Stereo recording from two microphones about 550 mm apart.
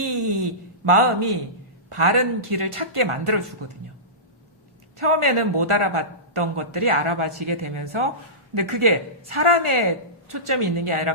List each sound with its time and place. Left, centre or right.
0.9 s a man's voice: right
4.9 s a man's voice: right